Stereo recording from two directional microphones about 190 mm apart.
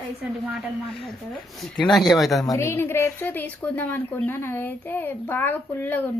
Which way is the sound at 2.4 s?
15° left (ahead or behind).